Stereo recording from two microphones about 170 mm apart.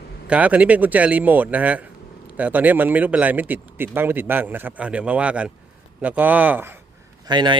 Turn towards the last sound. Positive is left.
turn(degrees=-25)  # may be behind; listen again after turning